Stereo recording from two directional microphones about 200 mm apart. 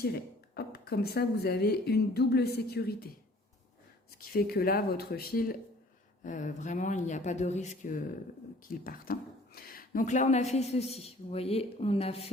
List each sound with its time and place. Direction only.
0.5 s a woman's voice: 50° left (ahead or behind)
4.2 s a woman's voice: 50° left (ahead or behind); by 12.3 s 30° left (ahead or behind)